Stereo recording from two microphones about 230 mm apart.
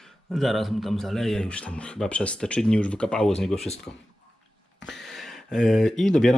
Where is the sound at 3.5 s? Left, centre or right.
Left.